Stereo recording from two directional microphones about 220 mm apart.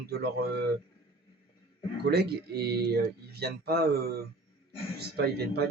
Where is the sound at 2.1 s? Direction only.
45° right (ahead or behind).